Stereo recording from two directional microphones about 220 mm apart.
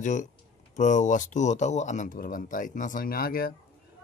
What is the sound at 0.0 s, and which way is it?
Speech, 35° left (ahead or behind).